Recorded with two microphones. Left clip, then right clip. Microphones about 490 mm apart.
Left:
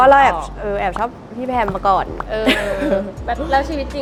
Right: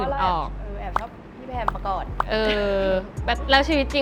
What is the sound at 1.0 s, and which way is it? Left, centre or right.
Speech, centre.